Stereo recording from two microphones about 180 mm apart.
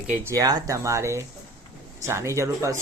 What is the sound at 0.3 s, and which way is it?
Speech, 20° right (ahead or behind).